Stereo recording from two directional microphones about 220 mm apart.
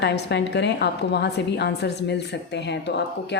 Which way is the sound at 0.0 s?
50° left (ahead or behind).